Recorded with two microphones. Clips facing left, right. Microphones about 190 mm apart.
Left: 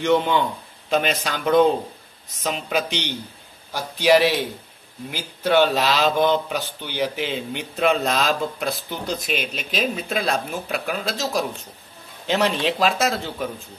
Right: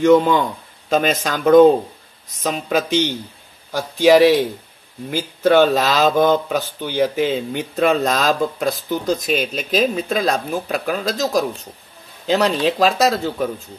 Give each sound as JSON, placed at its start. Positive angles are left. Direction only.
{"t": 0.0, "sound": "speech", "side_deg": -40}